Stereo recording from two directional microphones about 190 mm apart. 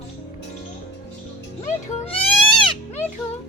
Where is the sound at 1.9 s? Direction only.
30° left (ahead or behind).